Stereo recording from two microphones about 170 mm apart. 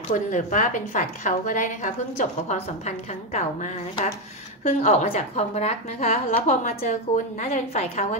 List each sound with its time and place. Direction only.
0.1 s a woman's voice: 45° left (ahead or behind)